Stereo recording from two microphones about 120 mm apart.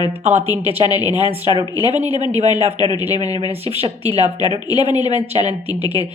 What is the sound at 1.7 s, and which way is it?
Speech, 40° left (ahead or behind).